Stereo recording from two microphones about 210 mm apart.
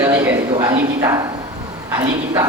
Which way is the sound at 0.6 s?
15° right (ahead or behind).